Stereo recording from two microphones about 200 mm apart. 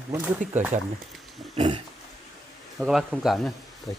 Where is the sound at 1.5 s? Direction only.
25° right (ahead or behind).